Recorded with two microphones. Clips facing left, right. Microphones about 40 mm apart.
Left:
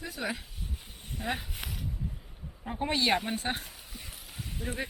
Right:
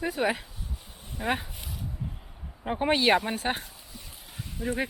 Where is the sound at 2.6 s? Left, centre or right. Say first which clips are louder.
Right 6 dB; right.